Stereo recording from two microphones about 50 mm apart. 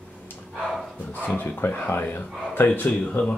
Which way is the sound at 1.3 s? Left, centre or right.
Left.